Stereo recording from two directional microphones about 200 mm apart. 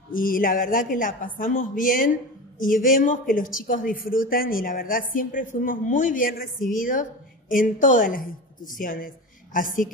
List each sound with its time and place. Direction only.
0.1 s a woman's voice: 45° left (ahead or behind)